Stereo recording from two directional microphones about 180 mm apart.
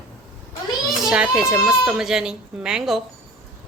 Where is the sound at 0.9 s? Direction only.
5° right (ahead or behind).